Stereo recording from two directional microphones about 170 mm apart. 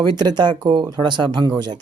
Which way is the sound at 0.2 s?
25° right (ahead or behind).